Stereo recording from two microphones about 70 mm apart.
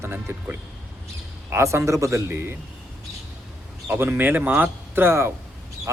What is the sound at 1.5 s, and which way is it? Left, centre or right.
A man's voice, right.